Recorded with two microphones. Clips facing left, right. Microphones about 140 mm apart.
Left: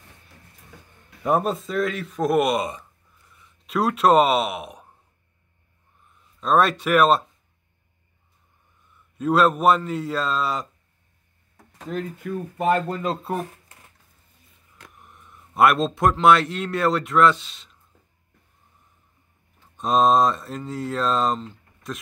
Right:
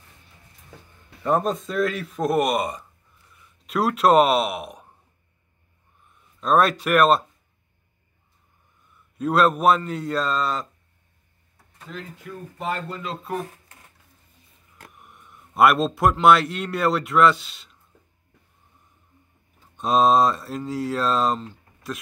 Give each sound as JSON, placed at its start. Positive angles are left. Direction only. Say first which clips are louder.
{"t": 1.2, "sound": "speech", "louder": "even", "side_deg": 10}
{"t": 6.4, "sound": "speech", "louder": "even", "side_deg": 0}
{"t": 8.9, "sound": "speech", "louder": "left 1 dB", "side_deg": 0}
{"t": 11.9, "sound": "speech", "louder": "left 8 dB", "side_deg": 50}
{"t": 13.0, "sound": "speech", "louder": "left 6 dB", "side_deg": 40}
{"t": 14.9, "sound": "a man's voice", "louder": "even", "side_deg": 0}
{"t": 19.8, "sound": "speech", "louder": "even", "side_deg": 0}